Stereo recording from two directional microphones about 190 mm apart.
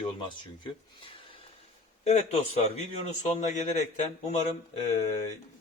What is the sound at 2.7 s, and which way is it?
A man's voice, 35° left (ahead or behind).